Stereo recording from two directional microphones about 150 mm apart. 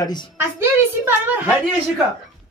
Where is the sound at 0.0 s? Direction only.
30° left (ahead or behind).